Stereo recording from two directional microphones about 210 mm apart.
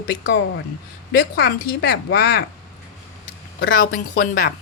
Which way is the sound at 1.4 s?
45° left (ahead or behind).